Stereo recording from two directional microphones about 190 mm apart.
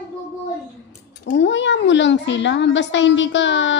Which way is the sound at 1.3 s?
70° left (ahead or behind).